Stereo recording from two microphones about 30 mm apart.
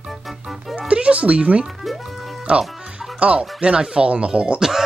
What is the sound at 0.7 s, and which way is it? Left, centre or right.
Music, right.